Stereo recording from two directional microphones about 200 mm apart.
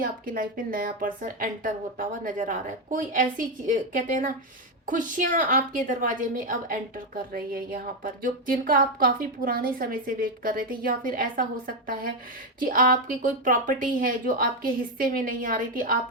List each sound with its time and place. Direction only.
0.0 s a woman's voice: 45° right (ahead or behind)